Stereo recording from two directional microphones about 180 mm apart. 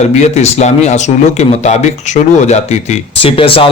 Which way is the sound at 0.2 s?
40° left (ahead or behind).